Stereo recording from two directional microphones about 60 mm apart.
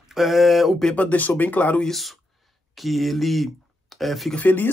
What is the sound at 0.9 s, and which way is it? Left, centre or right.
Speech, left.